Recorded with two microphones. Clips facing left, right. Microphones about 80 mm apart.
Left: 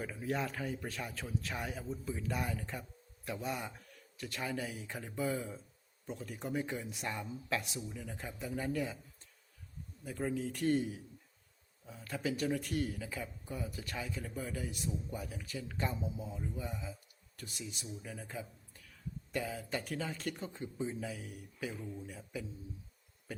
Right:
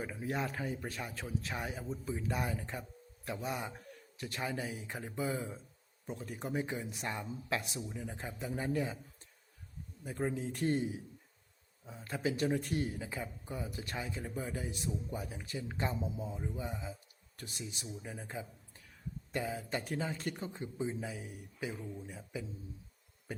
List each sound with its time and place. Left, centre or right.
0.0 s speech: centre
10.0 s speech: right